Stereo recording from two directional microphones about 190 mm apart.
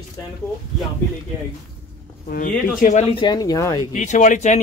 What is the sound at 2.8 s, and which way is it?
Speech, 40° left (ahead or behind).